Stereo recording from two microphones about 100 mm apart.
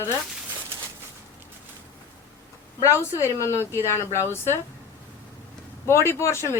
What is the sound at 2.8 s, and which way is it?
Speech, 30° left (ahead or behind).